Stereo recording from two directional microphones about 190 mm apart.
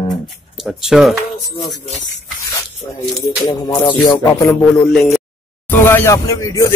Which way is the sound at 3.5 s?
25° left (ahead or behind).